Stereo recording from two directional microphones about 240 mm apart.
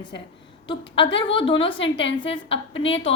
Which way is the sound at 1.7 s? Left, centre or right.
Left.